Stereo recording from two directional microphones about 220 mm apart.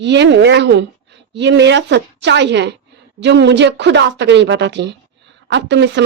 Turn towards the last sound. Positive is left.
turn(degrees=-50)  # may be behind; listen again after turning